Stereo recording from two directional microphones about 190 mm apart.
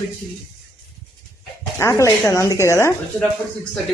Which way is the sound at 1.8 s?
15° left (ahead or behind).